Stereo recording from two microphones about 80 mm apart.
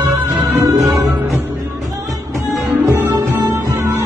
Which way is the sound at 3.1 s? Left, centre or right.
Right.